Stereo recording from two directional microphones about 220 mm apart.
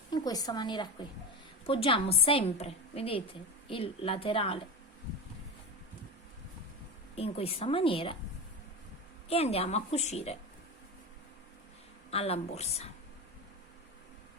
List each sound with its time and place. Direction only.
0.1 s a woman's voice: 15° left (ahead or behind)
7.2 s a woman's voice: 25° left (ahead or behind)
9.3 s a woman's voice: 25° left (ahead or behind)
12.1 s a woman's voice: 25° left (ahead or behind)